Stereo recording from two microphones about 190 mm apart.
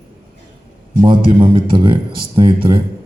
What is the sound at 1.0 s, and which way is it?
A man's voice, 25° right (ahead or behind).